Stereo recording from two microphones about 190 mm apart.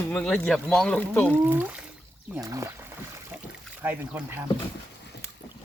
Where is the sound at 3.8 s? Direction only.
10° right (ahead or behind).